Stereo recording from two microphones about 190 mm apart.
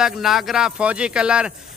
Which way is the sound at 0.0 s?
Centre (ahead or behind).